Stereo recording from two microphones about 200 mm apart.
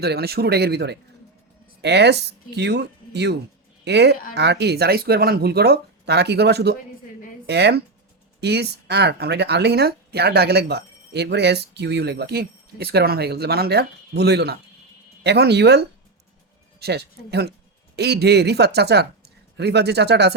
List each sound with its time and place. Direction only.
0.0 s speech: 55° right (ahead or behind)